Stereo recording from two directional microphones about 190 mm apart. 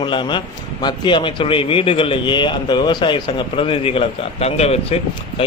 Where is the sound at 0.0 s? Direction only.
25° left (ahead or behind).